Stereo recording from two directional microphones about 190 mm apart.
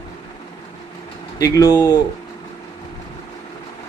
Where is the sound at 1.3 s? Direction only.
20° left (ahead or behind).